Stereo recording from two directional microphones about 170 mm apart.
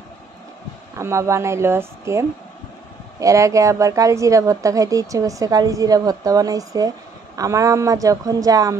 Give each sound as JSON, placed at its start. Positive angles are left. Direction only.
{"t": 0.9, "sound": "a woman's voice", "side_deg": -15}